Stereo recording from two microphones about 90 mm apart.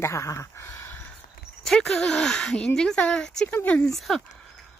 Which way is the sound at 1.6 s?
5° left (ahead or behind).